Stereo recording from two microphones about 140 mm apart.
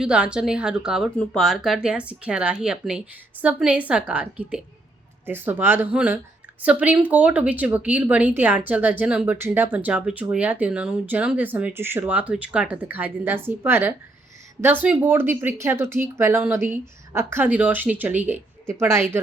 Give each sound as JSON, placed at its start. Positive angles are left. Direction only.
{"t": 0.0, "sound": "speech", "side_deg": -5}
{"t": 1.1, "sound": "a woman's voice", "side_deg": 5}